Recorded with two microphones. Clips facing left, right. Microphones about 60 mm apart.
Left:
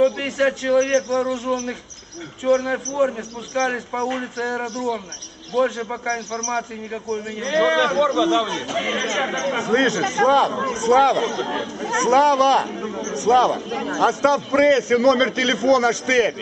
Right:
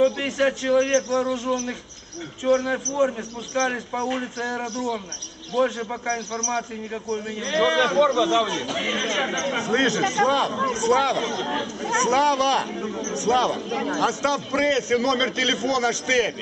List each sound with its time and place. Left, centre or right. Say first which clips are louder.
0.0 s a man's voice: left 2 dB; centre
13.0 s a man's voice: left 4 dB; centre
13.3 s a man's voice: left 5 dB; centre
14.3 s a man's voice: left 6 dB; left